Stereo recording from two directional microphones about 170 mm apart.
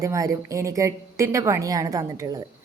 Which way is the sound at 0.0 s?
20° right (ahead or behind).